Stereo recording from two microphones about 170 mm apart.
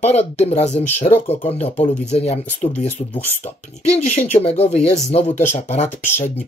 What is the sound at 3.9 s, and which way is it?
Speech, 40° left (ahead or behind).